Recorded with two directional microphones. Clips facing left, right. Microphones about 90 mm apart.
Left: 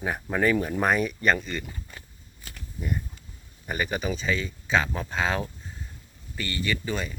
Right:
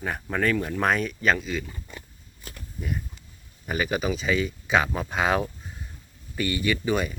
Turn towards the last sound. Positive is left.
turn(degrees=-15)  # may be behind; listen again after turning